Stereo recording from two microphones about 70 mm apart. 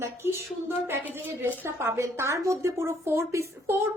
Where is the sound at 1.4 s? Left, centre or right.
Right.